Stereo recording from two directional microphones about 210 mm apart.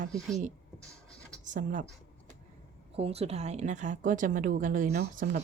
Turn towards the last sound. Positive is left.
turn(degrees=-40)  # may be behind; listen again after turning